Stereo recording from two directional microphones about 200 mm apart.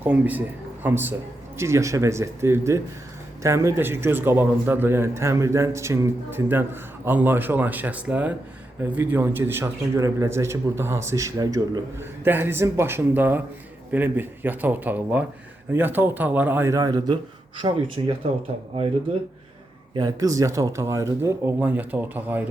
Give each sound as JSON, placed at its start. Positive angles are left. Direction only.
{"t": 0.0, "sound": "a man's voice", "side_deg": -10}
{"t": 19.9, "sound": "a man's voice", "side_deg": -20}